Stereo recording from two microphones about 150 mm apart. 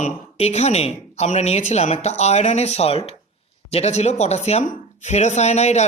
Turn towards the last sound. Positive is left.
turn(degrees=50)  # may be behind; listen again after turning